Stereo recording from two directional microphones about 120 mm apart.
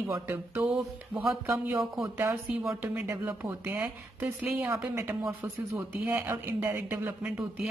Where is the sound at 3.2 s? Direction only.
15° right (ahead or behind).